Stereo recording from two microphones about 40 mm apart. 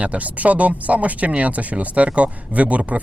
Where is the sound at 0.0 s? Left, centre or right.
Right.